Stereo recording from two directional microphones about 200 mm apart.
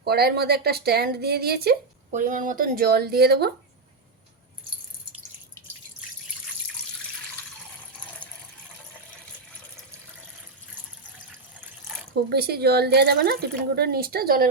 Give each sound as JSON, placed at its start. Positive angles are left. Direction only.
{"t": 0.0, "sound": "speech", "side_deg": -50}
{"t": 2.1, "sound": "speech", "side_deg": -40}
{"t": 12.3, "sound": "speech", "side_deg": -55}